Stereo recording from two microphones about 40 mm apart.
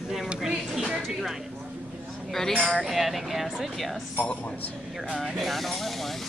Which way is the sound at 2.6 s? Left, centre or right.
Centre.